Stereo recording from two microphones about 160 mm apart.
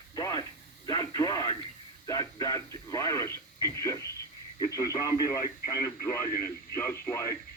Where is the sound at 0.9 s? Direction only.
25° left (ahead or behind).